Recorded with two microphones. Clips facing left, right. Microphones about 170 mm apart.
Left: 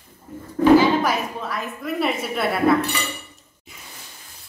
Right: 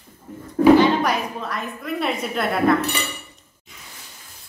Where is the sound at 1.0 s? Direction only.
Centre (ahead or behind).